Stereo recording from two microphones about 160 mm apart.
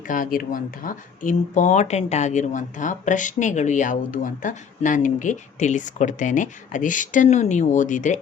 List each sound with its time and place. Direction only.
0.1 s speech: 60° left (ahead or behind)